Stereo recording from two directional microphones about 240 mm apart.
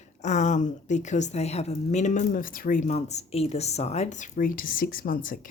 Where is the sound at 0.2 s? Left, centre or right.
Left.